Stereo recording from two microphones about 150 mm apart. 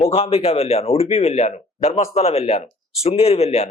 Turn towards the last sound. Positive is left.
turn(degrees=45)  # may be behind; listen again after turning